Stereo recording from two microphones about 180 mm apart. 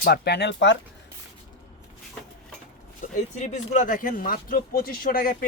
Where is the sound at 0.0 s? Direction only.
60° left (ahead or behind); by 0.8 s 80° left.